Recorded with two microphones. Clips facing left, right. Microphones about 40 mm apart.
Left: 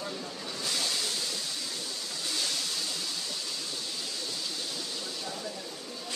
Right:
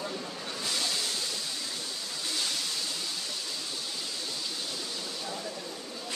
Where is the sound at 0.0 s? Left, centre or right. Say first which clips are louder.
Right 1 dB; centre.